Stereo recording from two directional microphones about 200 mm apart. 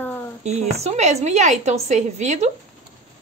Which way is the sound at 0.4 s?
35° right (ahead or behind).